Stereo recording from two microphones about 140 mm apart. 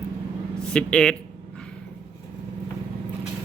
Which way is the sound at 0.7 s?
5° left (ahead or behind).